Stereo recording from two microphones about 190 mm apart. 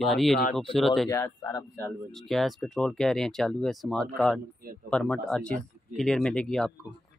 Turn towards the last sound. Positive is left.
turn(degrees=5)  # may be behind; listen again after turning